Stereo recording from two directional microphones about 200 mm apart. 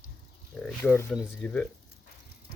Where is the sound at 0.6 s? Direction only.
10° left (ahead or behind).